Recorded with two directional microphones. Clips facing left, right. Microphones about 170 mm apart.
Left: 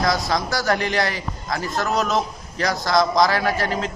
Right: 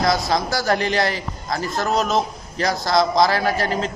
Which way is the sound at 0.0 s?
30° right (ahead or behind).